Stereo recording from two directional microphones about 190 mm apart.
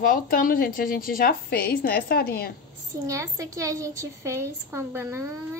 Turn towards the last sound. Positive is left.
turn(degrees=-15)  # may be behind; listen again after turning